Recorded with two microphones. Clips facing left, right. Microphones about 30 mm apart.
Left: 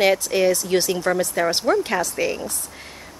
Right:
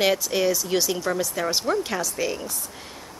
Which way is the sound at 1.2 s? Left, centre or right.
Left.